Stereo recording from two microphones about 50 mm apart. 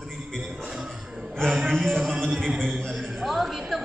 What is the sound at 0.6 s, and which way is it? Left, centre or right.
Music, centre.